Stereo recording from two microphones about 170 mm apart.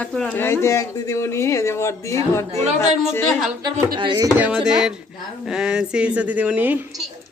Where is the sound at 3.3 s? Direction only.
Centre (ahead or behind).